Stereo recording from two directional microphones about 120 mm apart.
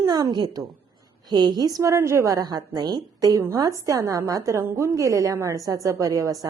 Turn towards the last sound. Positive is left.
turn(degrees=-30)  # may be behind; listen again after turning